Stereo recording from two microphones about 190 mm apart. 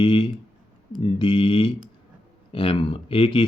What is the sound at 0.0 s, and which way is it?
Speech, 30° left (ahead or behind).